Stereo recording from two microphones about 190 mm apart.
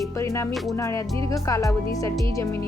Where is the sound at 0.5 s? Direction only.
Centre (ahead or behind).